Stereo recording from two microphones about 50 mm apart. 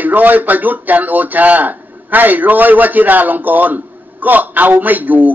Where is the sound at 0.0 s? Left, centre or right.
Right.